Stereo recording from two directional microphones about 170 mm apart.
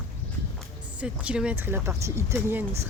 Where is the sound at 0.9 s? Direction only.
5° right (ahead or behind).